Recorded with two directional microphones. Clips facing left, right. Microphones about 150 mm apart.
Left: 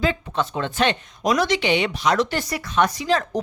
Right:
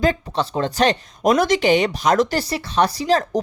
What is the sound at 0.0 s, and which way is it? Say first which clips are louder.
A woman's voice: right 3 dB; 40° right (ahead or behind).